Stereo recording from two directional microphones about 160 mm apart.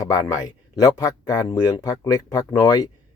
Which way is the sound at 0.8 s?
20° left (ahead or behind).